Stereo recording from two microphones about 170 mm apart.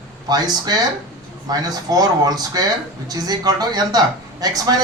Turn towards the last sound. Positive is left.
turn(degrees=-20)  # may be behind; listen again after turning